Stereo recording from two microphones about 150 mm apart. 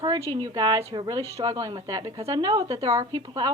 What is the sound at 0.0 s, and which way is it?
A woman's voice, 25° right (ahead or behind).